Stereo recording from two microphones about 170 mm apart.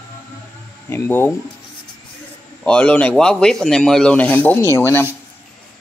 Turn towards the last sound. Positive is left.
turn(degrees=15)  # may be behind; listen again after turning